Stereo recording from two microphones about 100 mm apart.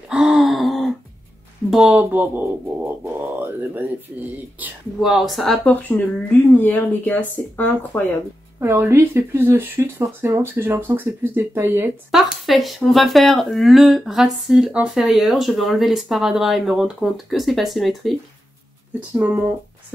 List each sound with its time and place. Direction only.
0.1 s gasp: 5° right (ahead or behind)
1.7 s speech: 10° right (ahead or behind)
5.0 s speech: centre (ahead or behind)
5.7 s speech: 15° left (ahead or behind)
8.5 s speech: 25° right (ahead or behind)
12.1 s speech: centre (ahead or behind)
18.9 s speech: 15° right (ahead or behind)